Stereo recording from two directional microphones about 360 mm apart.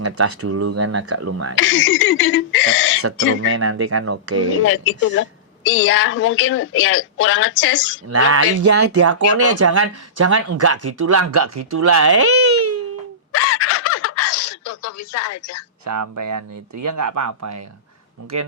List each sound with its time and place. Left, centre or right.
0.0 s speech: right
1.5 s a woman's voice: left
3.4 s speech: right
4.5 s a woman's voice: left
8.1 s speech: right
13.3 s a sound: left
15.8 s speech: right